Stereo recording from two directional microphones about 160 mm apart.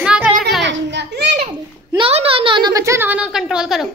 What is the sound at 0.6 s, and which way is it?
Children playing, 90° right.